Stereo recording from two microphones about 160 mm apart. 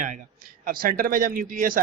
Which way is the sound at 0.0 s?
55° right (ahead or behind).